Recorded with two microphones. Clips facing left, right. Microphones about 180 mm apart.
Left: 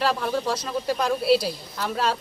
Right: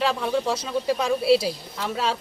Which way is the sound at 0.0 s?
Centre (ahead or behind).